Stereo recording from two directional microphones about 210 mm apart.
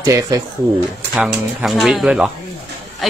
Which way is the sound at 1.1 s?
5° right (ahead or behind).